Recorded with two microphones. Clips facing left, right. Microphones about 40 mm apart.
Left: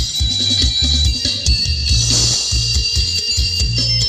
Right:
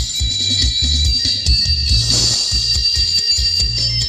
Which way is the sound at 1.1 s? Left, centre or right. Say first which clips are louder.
Right 1 dB; left.